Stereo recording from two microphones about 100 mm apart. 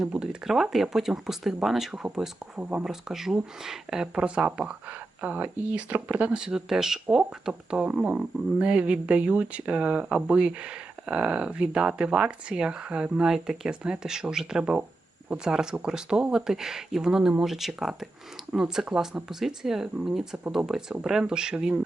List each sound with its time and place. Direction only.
0.0 s speech: 5° right (ahead or behind)
2.6 s speech: 15° right (ahead or behind)
2.8 s speech: 5° right (ahead or behind)